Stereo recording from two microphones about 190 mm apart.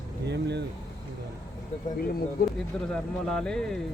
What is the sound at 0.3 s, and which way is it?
Speech, 65° right (ahead or behind).